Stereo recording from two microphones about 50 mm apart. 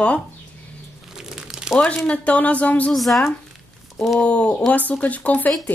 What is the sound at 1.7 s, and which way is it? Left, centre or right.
Speech, left.